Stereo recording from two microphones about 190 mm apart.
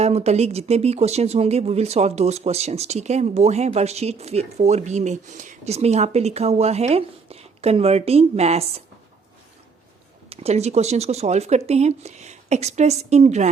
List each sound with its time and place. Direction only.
0.0 s speech: 35° right (ahead or behind)
10.2 s speech: 30° right (ahead or behind)